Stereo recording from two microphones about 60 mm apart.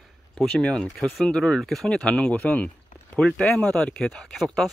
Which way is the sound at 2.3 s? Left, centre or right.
Left.